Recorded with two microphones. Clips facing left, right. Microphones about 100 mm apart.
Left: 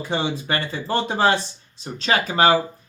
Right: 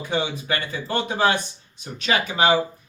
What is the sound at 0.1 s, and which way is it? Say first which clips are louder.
Speech: left 1 dB; 30° left (ahead or behind).